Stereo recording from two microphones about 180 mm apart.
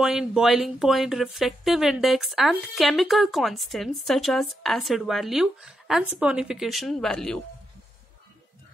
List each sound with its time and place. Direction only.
0.0 s speech: 5° right (ahead or behind)